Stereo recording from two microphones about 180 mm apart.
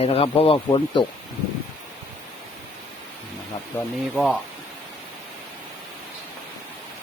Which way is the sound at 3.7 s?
10° left (ahead or behind).